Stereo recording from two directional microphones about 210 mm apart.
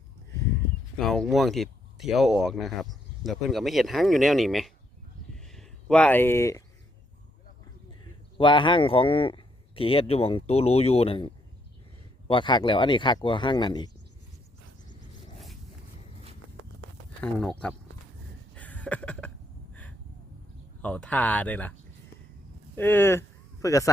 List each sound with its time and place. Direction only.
0.9 s speech: centre (ahead or behind)
5.4 s a sound: centre (ahead or behind)
8.4 s speech: 20° left (ahead or behind)
12.3 s speech: 20° left (ahead or behind)
17.2 s speech: 5° left (ahead or behind)
18.5 s a sound: 5° left (ahead or behind)
20.8 s speech: 5° left (ahead or behind)
22.7 s speech: 10° left (ahead or behind)